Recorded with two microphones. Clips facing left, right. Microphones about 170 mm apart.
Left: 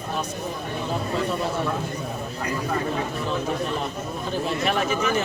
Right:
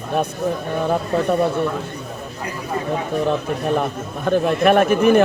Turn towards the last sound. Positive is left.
turn(degrees=-55)  # may be behind; listen again after turning